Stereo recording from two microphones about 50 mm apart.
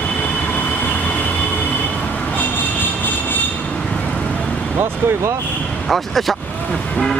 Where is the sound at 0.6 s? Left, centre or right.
Left.